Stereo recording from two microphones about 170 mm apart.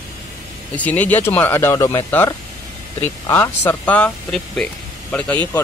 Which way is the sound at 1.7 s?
25° left (ahead or behind).